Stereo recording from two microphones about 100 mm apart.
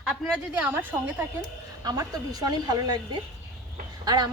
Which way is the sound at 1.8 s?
40° right (ahead or behind).